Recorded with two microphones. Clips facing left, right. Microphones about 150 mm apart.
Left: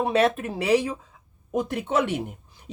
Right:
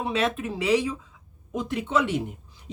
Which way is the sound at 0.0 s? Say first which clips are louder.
Left 5 dB; 55° left (ahead or behind).